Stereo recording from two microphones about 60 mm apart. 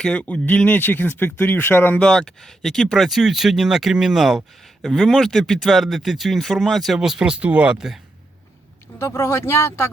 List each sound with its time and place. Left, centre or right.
0.0 s speech: centre
0.8 s speech: left
2.0 s speech: centre
7.0 s speech: centre
7.8 s speech: centre
9.0 s speech: left